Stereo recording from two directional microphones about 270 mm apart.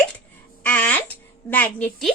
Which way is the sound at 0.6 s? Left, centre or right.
Centre.